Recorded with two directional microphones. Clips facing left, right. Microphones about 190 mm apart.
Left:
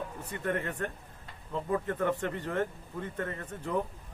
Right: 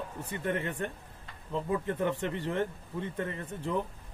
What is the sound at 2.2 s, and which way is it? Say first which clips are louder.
Speech: even; 30° right (ahead or behind).